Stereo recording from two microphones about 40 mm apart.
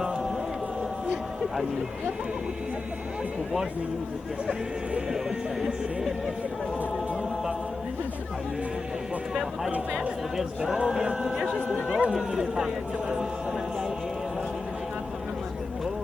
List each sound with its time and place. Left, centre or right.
9.3 s speech: centre
9.7 s speech: right
10.3 s speech: centre